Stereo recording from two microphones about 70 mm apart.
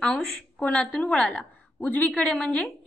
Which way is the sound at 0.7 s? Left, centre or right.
Centre.